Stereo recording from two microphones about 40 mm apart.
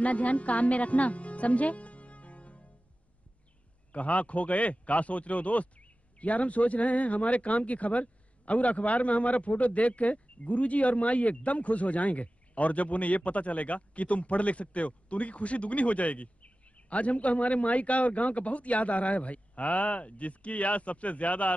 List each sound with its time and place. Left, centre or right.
0.0 s speech: left
3.9 s speech: left